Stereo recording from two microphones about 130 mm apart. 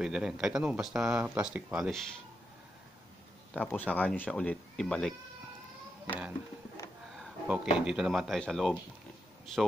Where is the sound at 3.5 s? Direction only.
15° left (ahead or behind).